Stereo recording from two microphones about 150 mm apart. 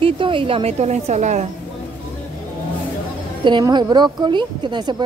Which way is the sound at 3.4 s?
30° right (ahead or behind).